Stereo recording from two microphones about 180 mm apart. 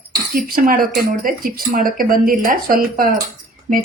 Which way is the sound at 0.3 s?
55° right (ahead or behind).